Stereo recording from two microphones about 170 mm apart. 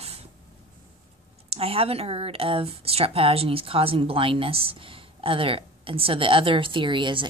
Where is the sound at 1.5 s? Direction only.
35° right (ahead or behind).